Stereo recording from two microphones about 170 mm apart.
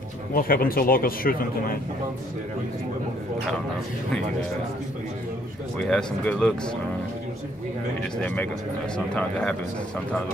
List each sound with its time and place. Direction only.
0.3 s speech: 60° left (ahead or behind)
5.8 s speech: 5° left (ahead or behind)
8.0 s speech: 10° left (ahead or behind)